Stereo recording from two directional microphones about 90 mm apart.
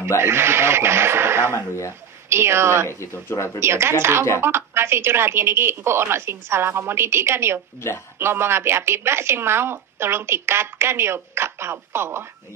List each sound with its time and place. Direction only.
0.2 s a woman's voice: 30° right (ahead or behind)
1.5 s speech: 30° left (ahead or behind)
2.2 s a woman's voice: 30° right (ahead or behind)
2.9 s speech: 30° left (ahead or behind)
3.5 s a woman's voice: 30° right (ahead or behind)
7.8 s speech: 30° left (ahead or behind)
8.2 s a woman's voice: 30° right (ahead or behind)